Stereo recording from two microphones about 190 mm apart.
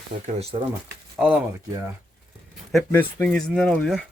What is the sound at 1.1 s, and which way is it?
Speech, 5° right (ahead or behind).